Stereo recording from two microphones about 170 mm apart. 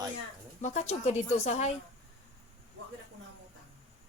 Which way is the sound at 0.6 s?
40° left (ahead or behind).